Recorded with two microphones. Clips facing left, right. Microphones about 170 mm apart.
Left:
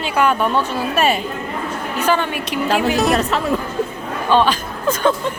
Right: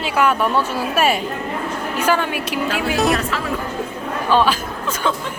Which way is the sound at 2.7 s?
45° left (ahead or behind).